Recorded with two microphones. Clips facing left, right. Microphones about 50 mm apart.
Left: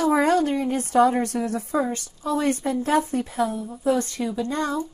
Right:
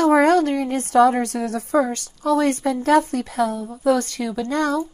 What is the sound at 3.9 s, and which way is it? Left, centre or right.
Speech, left.